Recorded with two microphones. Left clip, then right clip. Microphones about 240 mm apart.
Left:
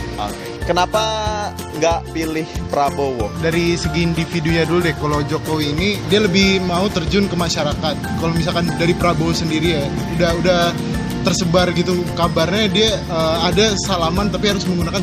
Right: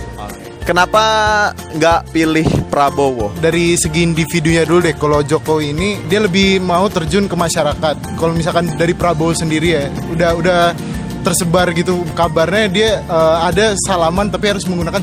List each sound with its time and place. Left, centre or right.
0.7 s speech: right